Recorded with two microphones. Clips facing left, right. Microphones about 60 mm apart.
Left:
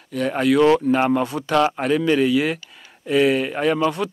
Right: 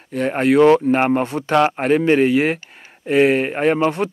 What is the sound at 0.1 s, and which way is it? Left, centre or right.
Speech, right.